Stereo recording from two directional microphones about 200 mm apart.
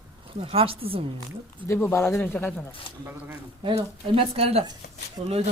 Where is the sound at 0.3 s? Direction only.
30° right (ahead or behind).